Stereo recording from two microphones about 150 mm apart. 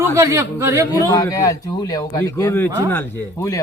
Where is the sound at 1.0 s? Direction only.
20° left (ahead or behind).